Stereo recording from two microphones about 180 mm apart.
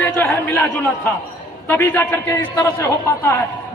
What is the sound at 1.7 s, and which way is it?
A man's voice, 15° left (ahead or behind).